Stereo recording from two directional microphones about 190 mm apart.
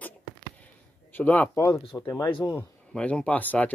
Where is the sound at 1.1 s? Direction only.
10° left (ahead or behind).